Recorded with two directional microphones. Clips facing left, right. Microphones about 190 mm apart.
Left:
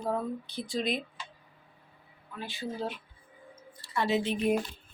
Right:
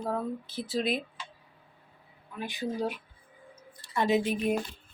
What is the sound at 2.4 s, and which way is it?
A woman's voice, 15° right (ahead or behind).